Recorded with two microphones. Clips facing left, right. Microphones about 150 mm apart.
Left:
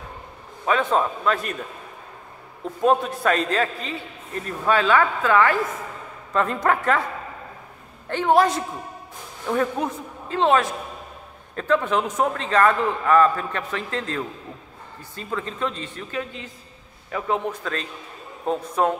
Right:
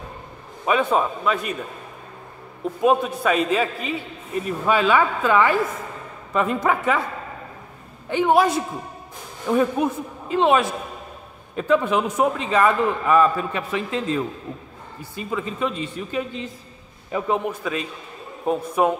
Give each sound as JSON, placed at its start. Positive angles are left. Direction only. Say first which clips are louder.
{"t": 0.7, "sound": "a man's voice", "louder": "right 1 dB", "side_deg": -10}
{"t": 2.8, "sound": "a man's voice", "louder": "right 1 dB", "side_deg": -5}
{"t": 8.1, "sound": "a man's voice", "louder": "right 1 dB", "side_deg": -5}
{"t": 17.5, "sound": "a man's voice", "louder": "right 2 dB", "side_deg": -10}